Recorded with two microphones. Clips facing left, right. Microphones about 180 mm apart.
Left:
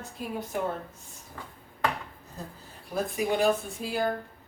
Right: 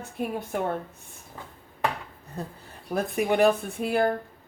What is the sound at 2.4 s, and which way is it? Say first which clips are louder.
A woman's voice: right 6 dB; 60° right (ahead or behind).